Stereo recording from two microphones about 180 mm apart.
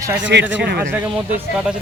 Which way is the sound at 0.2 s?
80° right.